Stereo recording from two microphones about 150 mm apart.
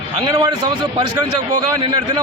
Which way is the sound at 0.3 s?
25° right (ahead or behind).